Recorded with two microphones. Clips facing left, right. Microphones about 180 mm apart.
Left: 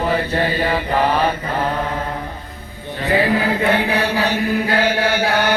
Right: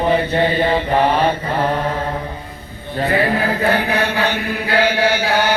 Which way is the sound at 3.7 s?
30° left (ahead or behind).